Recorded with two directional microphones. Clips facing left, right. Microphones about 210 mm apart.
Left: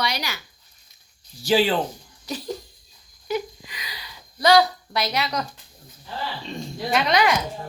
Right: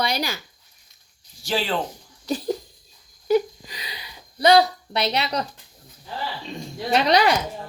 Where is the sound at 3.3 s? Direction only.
35° right (ahead or behind).